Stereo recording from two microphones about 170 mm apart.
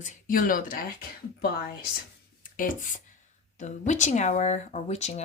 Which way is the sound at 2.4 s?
55° left (ahead or behind).